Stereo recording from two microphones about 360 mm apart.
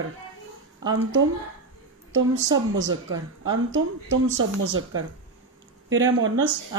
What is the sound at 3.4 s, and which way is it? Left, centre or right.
A woman's voice, right.